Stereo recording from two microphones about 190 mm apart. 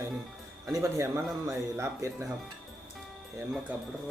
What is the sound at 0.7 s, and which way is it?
Speech, 15° right (ahead or behind).